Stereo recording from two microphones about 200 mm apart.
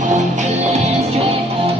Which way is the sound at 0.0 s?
40° right (ahead or behind).